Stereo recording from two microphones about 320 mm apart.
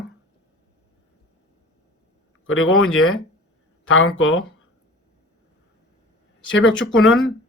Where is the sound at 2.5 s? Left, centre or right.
Left.